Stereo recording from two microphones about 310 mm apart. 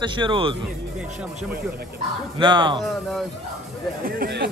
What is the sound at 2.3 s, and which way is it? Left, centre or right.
Speech, centre.